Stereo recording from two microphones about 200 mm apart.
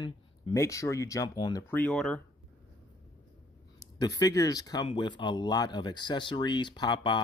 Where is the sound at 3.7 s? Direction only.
20° left (ahead or behind).